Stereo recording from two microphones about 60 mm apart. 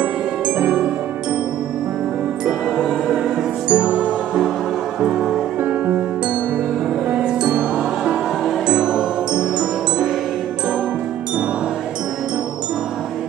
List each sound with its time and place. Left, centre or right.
3.6 s music: centre
7.1 s music: centre